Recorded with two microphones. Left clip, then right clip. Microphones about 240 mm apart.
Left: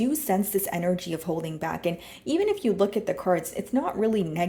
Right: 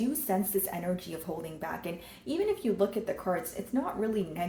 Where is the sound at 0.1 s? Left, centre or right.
Left.